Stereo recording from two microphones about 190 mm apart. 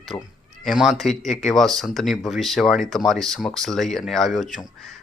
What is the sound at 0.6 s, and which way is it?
Speech, centre (ahead or behind).